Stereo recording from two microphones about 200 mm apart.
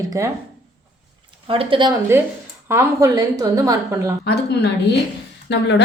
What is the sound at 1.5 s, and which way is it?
Speech, 25° right (ahead or behind).